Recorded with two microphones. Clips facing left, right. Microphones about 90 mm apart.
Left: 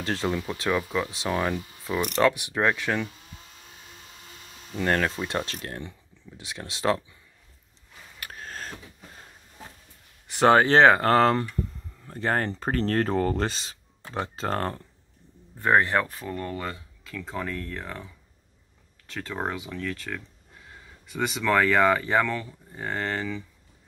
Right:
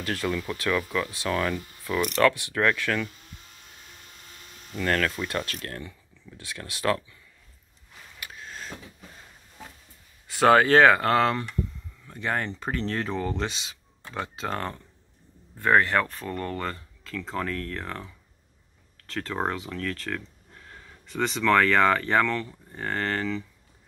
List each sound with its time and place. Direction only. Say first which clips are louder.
0.0 s speech: left 1 dB; 25° left (ahead or behind)
4.7 s speech: left 1 dB; 25° left (ahead or behind)
8.2 s a sound: left 2 dB; 45° left (ahead or behind)
10.2 s speech: even; 25° left (ahead or behind); by 14.8 s 40° left (ahead or behind)
15.6 s speech: even; 20° left (ahead or behind)